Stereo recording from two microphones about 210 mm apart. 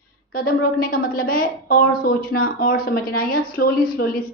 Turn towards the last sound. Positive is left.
turn(degrees=45)  # may be behind; listen again after turning